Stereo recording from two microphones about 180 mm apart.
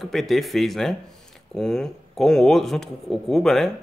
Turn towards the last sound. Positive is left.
turn(degrees=0)  # may be behind; listen again after turning